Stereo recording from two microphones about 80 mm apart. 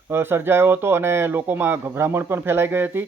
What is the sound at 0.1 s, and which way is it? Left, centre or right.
Speech, right.